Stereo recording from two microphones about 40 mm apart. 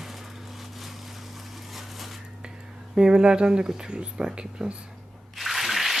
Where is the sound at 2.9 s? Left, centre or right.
Centre.